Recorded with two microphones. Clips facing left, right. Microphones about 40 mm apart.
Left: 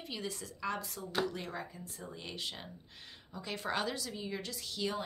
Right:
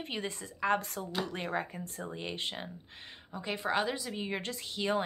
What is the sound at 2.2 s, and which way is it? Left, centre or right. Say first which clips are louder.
A woman's voice: right 4 dB; right.